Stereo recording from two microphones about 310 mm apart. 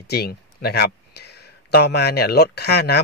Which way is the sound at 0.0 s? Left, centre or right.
Left.